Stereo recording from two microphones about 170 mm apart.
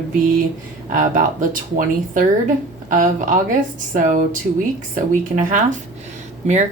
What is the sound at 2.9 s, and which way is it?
Speech, 50° right (ahead or behind).